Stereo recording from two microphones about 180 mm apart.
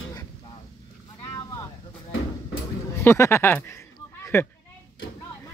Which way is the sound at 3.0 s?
15° left (ahead or behind).